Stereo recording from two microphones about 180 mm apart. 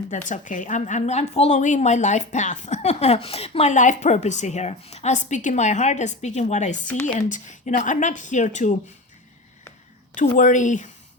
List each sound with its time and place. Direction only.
0.3 s a woman's voice: 45° left (ahead or behind)
10.2 s a woman's voice: 45° left (ahead or behind)